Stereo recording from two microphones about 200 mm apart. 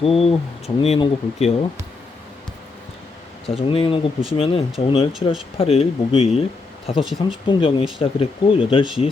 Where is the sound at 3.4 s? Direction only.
25° left (ahead or behind).